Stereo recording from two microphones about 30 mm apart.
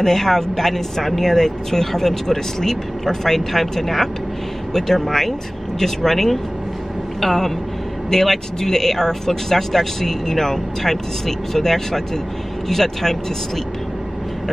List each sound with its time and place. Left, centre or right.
0.0 s speech: centre